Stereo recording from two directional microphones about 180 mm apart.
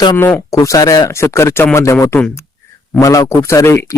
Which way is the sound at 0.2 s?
10° left (ahead or behind).